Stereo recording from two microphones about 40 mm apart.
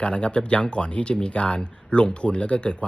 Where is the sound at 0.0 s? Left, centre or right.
Left.